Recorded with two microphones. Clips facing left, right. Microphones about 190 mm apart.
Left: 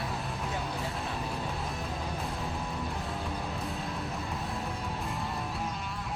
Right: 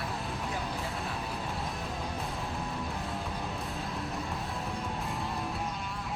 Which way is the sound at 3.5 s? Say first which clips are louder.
Left 1 dB; centre (ahead or behind).